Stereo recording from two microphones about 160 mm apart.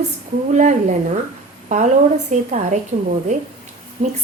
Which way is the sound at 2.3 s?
50° right (ahead or behind).